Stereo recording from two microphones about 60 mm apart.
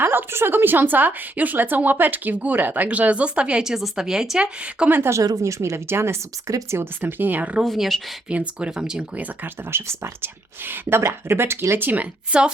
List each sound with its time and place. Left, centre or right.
0.0 s speech: right; by 4.9 s centre
5.2 s speech: right
7.0 s speech: right
7.8 s a woman's voice: centre
8.3 s speech: centre
9.1 s speech: right
9.7 s speech: right